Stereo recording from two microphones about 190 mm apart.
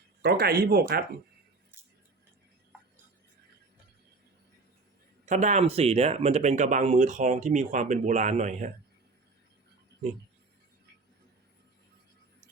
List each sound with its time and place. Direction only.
0.2 s speech: 55° right (ahead or behind)
5.2 s speech: 40° right (ahead or behind)